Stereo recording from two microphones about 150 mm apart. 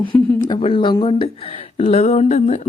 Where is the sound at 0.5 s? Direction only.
35° left (ahead or behind).